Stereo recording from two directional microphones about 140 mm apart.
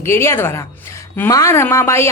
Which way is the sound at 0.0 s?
20° left (ahead or behind).